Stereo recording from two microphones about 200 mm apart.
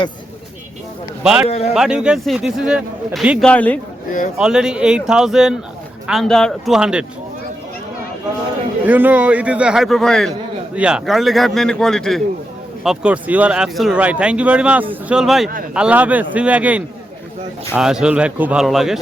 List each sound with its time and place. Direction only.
1.2 s a man's voice: 5° right (ahead or behind)
1.5 s a man's voice: 30° left (ahead or behind)
1.7 s a man's voice: 5° right (ahead or behind)
4.4 s a man's voice: 5° right (ahead or behind)
8.9 s a man's voice: 10° right (ahead or behind)